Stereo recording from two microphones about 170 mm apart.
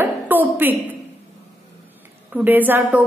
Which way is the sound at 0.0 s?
10° right (ahead or behind).